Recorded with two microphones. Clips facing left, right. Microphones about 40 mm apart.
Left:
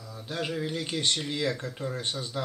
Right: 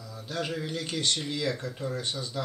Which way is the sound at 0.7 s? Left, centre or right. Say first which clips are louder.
Left 1 dB; centre.